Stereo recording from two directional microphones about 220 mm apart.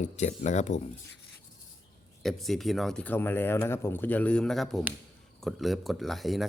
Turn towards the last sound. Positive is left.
turn(degrees=0)  # may be behind; listen again after turning